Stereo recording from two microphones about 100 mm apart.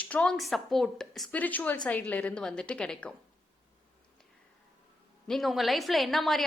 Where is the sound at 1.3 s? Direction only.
15° left (ahead or behind).